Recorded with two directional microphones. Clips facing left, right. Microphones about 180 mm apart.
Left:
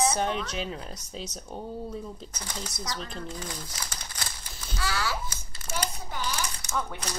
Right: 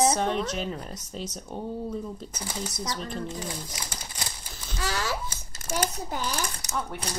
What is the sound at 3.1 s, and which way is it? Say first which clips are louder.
Speech: right 4 dB; 25° right (ahead or behind).